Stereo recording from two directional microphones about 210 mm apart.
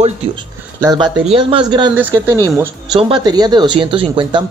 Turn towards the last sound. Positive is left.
turn(degrees=-25)  # may be behind; listen again after turning